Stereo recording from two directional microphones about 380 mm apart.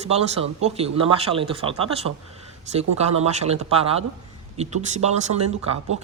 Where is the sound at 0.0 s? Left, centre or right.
Centre.